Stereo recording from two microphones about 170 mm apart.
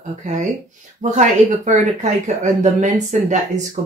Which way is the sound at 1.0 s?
45° right (ahead or behind).